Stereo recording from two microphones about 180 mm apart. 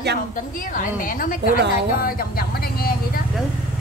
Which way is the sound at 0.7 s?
50° left (ahead or behind).